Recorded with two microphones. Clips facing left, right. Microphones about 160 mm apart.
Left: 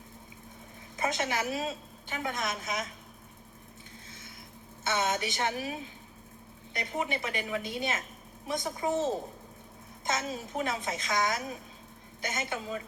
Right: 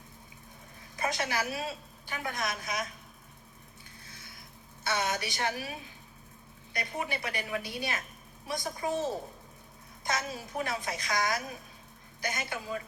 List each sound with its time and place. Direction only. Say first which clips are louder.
0.9 s a woman's voice: left 1 dB; 20° left (ahead or behind)
4.8 s a woman's voice: left 2 dB; 20° left (ahead or behind)